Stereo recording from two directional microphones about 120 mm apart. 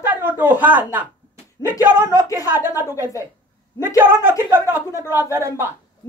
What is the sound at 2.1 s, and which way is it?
Speech, 30° left (ahead or behind).